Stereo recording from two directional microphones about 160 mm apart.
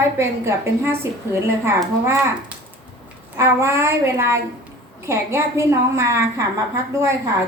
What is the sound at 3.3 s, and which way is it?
A woman's voice, 15° right (ahead or behind).